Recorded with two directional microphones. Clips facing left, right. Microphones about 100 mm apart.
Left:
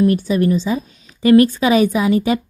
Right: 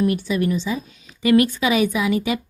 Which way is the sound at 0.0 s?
40° left (ahead or behind).